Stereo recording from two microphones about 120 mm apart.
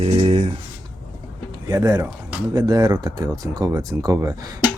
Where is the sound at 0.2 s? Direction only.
60° right (ahead or behind).